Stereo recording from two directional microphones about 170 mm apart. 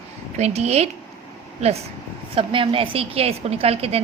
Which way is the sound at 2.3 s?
30° right (ahead or behind).